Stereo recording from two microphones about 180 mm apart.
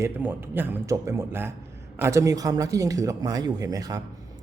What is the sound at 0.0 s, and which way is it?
A man's voice, 10° right (ahead or behind).